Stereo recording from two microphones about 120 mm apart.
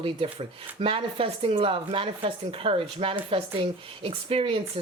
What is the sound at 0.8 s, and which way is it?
Speech, 50° right (ahead or behind).